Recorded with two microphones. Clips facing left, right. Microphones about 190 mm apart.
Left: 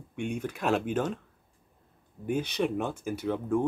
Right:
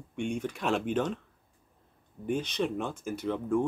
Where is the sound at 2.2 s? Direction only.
10° left (ahead or behind).